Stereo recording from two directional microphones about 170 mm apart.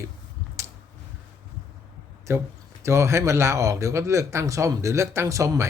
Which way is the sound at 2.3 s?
15° right (ahead or behind).